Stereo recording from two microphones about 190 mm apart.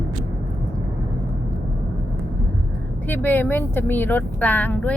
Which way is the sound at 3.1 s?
10° left (ahead or behind).